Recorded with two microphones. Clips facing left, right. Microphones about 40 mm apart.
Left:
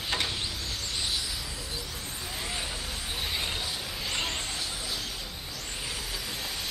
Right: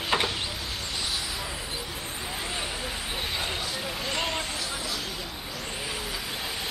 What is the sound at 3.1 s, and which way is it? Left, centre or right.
Vehicle, centre.